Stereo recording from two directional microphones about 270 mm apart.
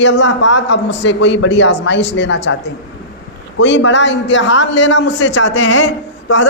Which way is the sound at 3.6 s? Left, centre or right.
Left.